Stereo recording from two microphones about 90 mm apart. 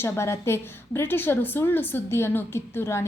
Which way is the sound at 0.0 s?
30° left (ahead or behind).